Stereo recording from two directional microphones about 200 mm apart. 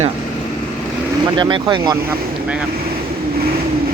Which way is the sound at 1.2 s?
25° right (ahead or behind).